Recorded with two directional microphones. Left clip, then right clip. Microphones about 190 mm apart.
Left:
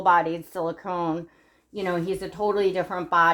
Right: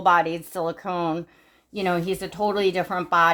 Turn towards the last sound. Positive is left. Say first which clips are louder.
# right 1 dB
turn(degrees=5)  # may be behind; listen again after turning